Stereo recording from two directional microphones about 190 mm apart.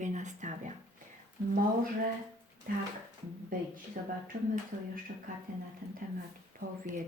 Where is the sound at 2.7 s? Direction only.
50° right (ahead or behind).